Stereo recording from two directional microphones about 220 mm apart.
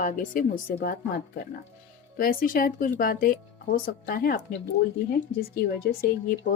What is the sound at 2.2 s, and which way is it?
A woman's voice, 40° left (ahead or behind).